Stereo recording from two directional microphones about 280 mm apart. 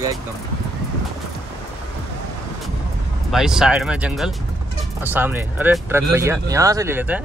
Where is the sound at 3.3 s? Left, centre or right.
Centre.